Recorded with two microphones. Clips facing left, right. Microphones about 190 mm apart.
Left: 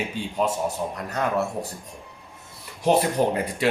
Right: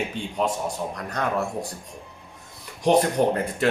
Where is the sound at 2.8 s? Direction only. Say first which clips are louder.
Right 1 dB; 10° left (ahead or behind).